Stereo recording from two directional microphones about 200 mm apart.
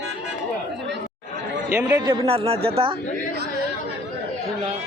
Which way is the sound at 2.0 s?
25° right (ahead or behind).